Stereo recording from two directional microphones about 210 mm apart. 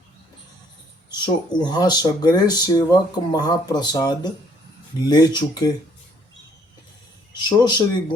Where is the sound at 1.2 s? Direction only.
20° left (ahead or behind).